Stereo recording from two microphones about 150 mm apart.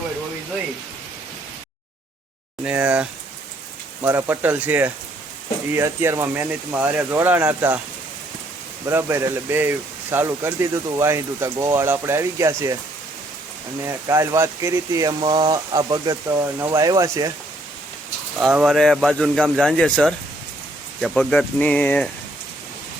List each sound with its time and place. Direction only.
2.6 s a sound: 5° right (ahead or behind)
4.0 s speech: 10° right (ahead or behind)
8.9 s speech: 15° right (ahead or behind)
13.8 s speech: 20° right (ahead or behind)
18.3 s speech: 5° right (ahead or behind)